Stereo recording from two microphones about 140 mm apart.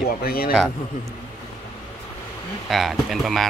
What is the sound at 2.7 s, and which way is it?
Speech, centre (ahead or behind).